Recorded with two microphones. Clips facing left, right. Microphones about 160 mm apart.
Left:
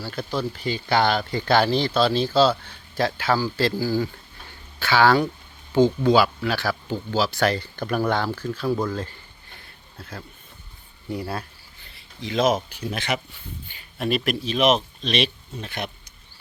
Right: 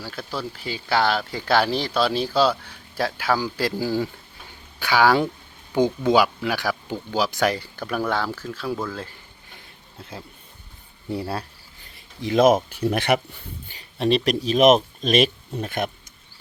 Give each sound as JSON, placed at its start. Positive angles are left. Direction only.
{"t": 0.3, "sound": "speech", "side_deg": -5}
{"t": 3.8, "sound": "speech", "side_deg": -25}
{"t": 4.8, "sound": "speech", "side_deg": -15}
{"t": 10.0, "sound": "speech", "side_deg": -20}
{"t": 11.9, "sound": "speech", "side_deg": -50}
{"t": 13.7, "sound": "speech", "side_deg": -35}